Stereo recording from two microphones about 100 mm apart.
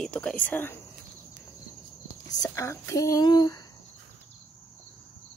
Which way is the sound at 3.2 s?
45° left (ahead or behind).